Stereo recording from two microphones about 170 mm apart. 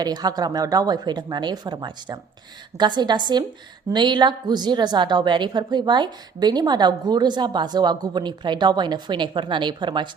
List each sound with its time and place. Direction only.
0.0 s a woman's voice: 25° right (ahead or behind)